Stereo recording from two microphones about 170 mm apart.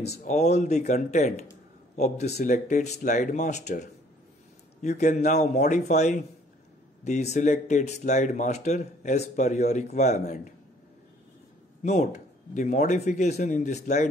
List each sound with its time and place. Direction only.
0.2 s speech: 45° left (ahead or behind)
11.8 s speech: 40° left (ahead or behind)